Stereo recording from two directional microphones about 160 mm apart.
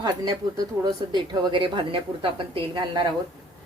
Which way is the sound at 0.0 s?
25° right (ahead or behind).